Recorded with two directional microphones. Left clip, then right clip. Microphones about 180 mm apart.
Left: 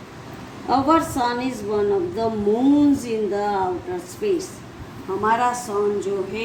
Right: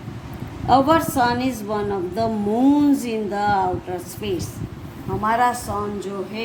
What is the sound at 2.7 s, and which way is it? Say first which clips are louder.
Speech: even; 45° right (ahead or behind).